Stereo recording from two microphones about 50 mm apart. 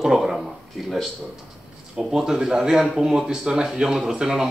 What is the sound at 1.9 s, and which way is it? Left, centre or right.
Speech, centre.